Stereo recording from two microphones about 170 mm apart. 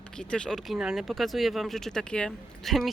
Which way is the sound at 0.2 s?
5° left (ahead or behind).